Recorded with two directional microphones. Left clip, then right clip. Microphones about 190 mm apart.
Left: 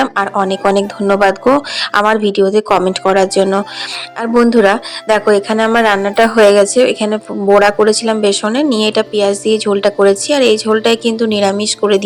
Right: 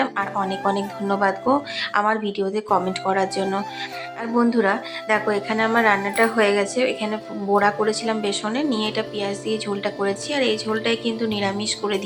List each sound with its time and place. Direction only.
0.0 s speech: 40° left (ahead or behind)